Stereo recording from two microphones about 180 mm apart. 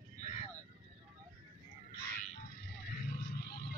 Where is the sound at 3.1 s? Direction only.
60° left (ahead or behind).